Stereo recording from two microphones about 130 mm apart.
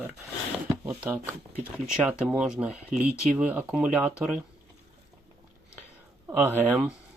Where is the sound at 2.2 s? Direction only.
5° right (ahead or behind).